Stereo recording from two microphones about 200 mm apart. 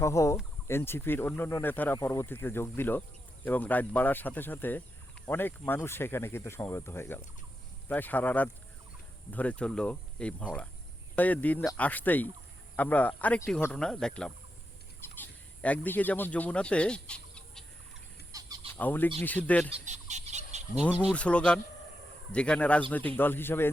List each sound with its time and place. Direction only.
0.0 s speech: 15° left (ahead or behind)
18.3 s a sound: 15° right (ahead or behind)
18.8 s speech: 10° left (ahead or behind)
19.7 s fowl: 35° right (ahead or behind)
21.1 s speech: 5° left (ahead or behind)